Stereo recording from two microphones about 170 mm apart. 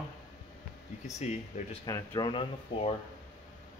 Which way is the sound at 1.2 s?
40° left (ahead or behind).